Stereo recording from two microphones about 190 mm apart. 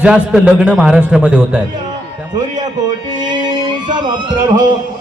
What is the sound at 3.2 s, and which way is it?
Music, 25° right (ahead or behind).